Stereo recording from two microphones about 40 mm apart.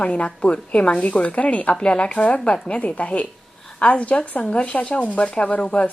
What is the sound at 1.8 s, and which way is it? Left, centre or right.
Speech, left.